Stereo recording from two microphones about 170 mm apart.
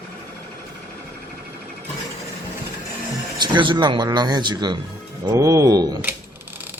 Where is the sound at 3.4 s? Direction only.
25° right (ahead or behind).